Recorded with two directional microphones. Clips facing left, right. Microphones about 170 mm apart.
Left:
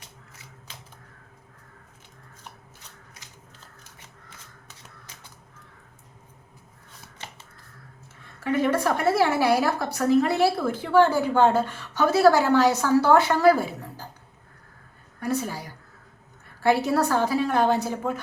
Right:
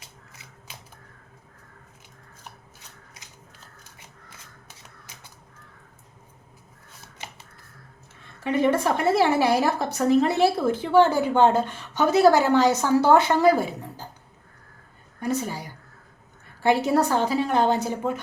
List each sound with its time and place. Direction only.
0.7 s a sound: 10° right (ahead or behind)
8.4 s a woman's voice: 20° right (ahead or behind)
15.2 s a woman's voice: 20° right (ahead or behind)
16.6 s a woman's voice: 20° right (ahead or behind)